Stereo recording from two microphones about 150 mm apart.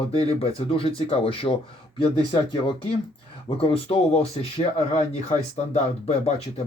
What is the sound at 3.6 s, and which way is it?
Speech, 40° left (ahead or behind).